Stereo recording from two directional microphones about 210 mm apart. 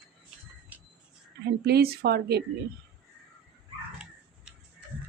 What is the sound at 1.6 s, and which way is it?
Speech, 50° right (ahead or behind).